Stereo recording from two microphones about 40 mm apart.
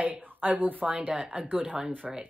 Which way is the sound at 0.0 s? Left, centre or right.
Right.